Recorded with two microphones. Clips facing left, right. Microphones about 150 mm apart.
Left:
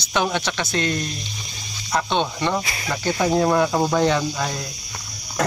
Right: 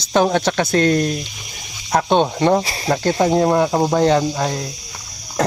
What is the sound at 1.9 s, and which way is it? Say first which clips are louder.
Speech: right 5 dB; 70° right (ahead or behind).